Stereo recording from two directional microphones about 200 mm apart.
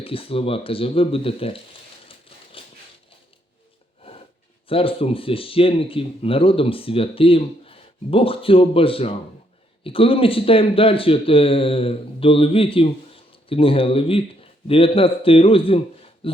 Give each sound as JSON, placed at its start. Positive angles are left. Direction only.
{"t": 0.0, "sound": "speech", "side_deg": 30}
{"t": 2.0, "sound": "a sound", "side_deg": 25}
{"t": 4.7, "sound": "speech", "side_deg": 25}